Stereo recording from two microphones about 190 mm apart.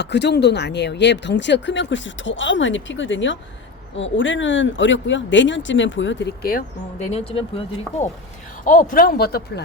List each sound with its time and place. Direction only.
0.0 s speech: 65° left (ahead or behind)
7.1 s speech: 30° left (ahead or behind)
8.6 s speech: 45° left (ahead or behind)